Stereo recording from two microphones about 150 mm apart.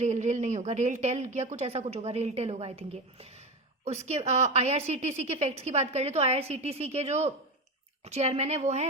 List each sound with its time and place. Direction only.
0.0 s a woman's voice: 50° right (ahead or behind)